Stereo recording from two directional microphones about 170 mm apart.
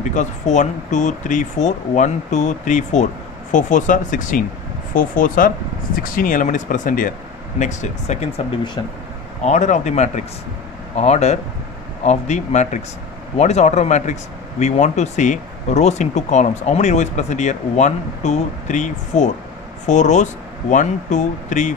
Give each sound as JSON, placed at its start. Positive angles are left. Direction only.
{"t": 0.1, "sound": "speech", "side_deg": 45}
{"t": 9.4, "sound": "speech", "side_deg": 45}